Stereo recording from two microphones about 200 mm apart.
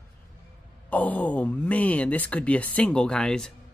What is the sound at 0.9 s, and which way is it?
Speech, 10° left (ahead or behind).